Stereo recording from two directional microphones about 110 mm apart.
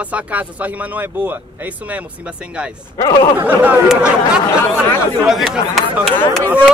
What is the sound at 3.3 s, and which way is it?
Speech, 15° right (ahead or behind).